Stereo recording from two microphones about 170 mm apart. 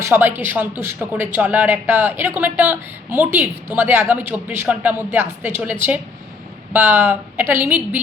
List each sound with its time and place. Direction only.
0.0 s speech: 10° right (ahead or behind)